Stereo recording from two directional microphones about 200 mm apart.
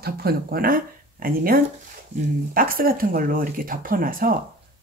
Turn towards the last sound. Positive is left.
turn(degrees=-45)  # may be behind; listen again after turning